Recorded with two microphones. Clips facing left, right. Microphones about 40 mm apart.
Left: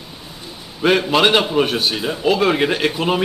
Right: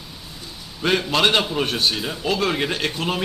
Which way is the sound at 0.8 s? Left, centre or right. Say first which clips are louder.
Left 4 dB; centre.